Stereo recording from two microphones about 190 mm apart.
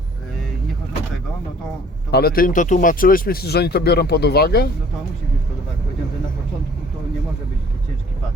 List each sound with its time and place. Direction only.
2.0 s speech: 55° left (ahead or behind)